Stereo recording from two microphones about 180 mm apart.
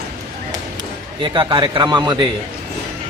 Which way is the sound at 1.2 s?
25° right (ahead or behind).